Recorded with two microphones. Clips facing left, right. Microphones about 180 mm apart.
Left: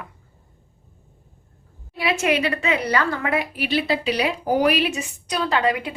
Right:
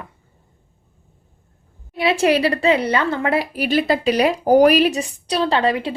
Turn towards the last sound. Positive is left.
turn(degrees=-30)  # may be behind; listen again after turning